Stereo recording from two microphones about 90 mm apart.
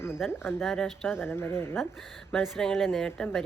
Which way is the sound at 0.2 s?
Centre (ahead or behind).